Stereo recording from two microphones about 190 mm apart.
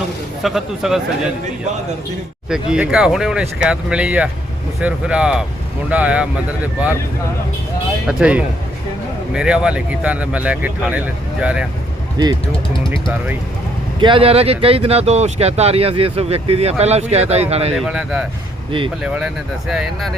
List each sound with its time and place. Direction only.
0.4 s speech: centre (ahead or behind)
2.5 s speech: 5° right (ahead or behind)
8.0 s speech: 5° right (ahead or behind)
12.1 s speech: 20° right (ahead or behind)
12.5 s speech: 25° left (ahead or behind)
14.0 s speech: 30° right (ahead or behind)
17.7 s speech: 5° right (ahead or behind)